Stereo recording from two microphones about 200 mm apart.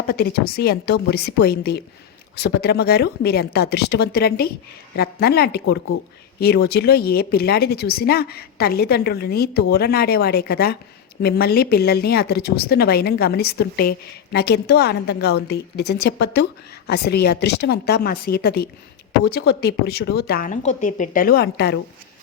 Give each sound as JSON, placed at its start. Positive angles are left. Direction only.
{"t": 0.1, "sound": "a woman's voice", "side_deg": 50}